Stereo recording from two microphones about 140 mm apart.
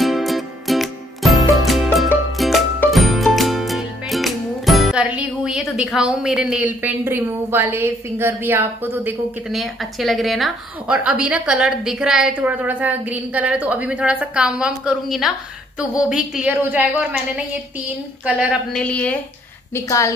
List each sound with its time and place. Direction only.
0.0 s music: centre (ahead or behind)
9.5 s a woman's voice: centre (ahead or behind)
18.8 s a woman's voice: 10° left (ahead or behind)
19.7 s a woman's voice: 20° left (ahead or behind)